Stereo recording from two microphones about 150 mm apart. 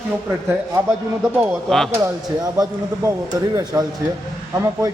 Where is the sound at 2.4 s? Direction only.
25° right (ahead or behind).